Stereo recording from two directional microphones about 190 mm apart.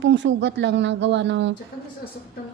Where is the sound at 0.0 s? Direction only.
70° right (ahead or behind).